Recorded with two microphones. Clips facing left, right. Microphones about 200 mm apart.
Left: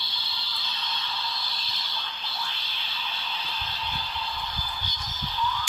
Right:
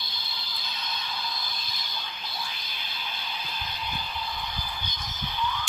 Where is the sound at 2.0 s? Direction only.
20° right (ahead or behind).